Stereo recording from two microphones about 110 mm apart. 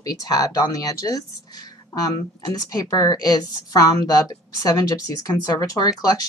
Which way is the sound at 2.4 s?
35° left (ahead or behind).